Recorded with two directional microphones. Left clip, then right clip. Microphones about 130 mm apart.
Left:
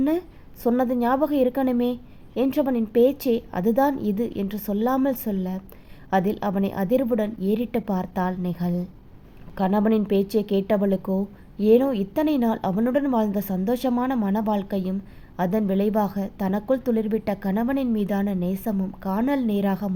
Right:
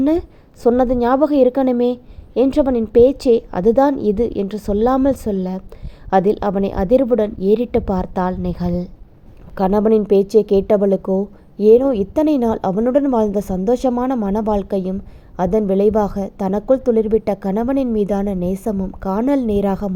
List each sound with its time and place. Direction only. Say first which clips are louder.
0.0 s a woman's voice: right 7 dB; 30° right (ahead or behind)